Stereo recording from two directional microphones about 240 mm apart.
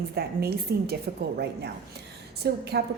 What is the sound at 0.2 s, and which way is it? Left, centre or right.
Speech, right.